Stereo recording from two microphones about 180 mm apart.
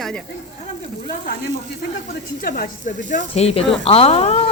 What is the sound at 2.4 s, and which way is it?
A woman's voice, 50° left (ahead or behind).